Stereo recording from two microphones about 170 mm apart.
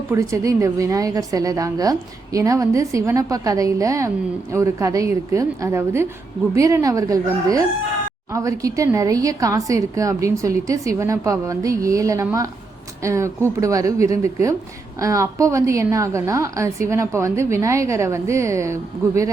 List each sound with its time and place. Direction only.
0.1 s a woman's voice: 20° right (ahead or behind)